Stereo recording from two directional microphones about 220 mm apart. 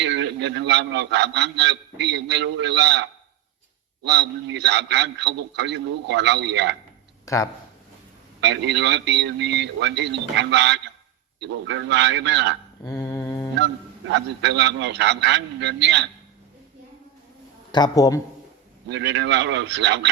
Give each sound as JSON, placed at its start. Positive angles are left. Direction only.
{"t": 0.0, "sound": "a man's voice", "side_deg": -55}
{"t": 7.3, "sound": "speech", "side_deg": 15}
{"t": 8.4, "sound": "a man's voice", "side_deg": -50}
{"t": 13.0, "sound": "mantra", "side_deg": 15}
{"t": 14.1, "sound": "a man's voice", "side_deg": -50}
{"t": 17.7, "sound": "a man's voice", "side_deg": 20}
{"t": 18.9, "sound": "a man's voice", "side_deg": -55}